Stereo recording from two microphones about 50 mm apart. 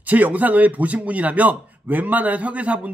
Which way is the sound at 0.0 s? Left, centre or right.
Right.